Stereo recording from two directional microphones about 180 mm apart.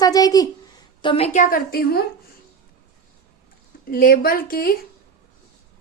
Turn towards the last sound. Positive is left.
turn(degrees=55)  # may be behind; listen again after turning